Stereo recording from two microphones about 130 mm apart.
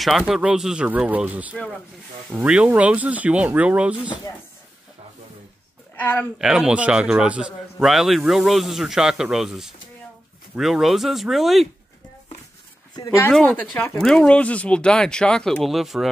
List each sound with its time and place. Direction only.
0.3 s speech: 5° right (ahead or behind)
5.9 s speech: 15° left (ahead or behind)
6.3 s a man's voice: 5° right (ahead or behind)
12.9 s speech: 25° left (ahead or behind)
13.3 s a man's voice: 5° left (ahead or behind)